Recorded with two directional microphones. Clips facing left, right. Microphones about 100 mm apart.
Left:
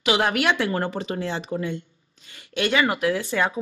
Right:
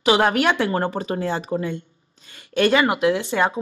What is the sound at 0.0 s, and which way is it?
Speech, 35° right (ahead or behind).